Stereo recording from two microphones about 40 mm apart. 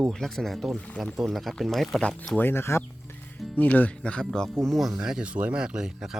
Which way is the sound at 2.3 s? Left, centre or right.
Left.